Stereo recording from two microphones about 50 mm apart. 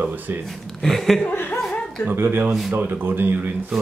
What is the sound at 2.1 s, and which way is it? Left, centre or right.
Speech, right.